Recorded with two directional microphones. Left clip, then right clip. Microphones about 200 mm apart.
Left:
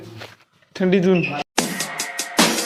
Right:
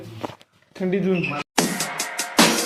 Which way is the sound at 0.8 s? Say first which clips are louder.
Left 5 dB; 35° left (ahead or behind).